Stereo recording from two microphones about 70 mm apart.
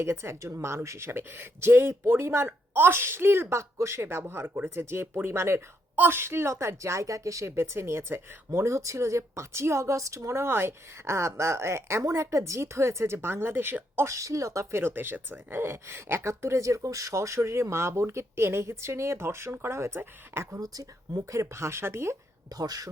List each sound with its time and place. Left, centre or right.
0.0 s a woman's voice: right
13.9 s a woman's voice: right
16.3 s a woman's voice: right
20.6 s speech: right
22.4 s speech: right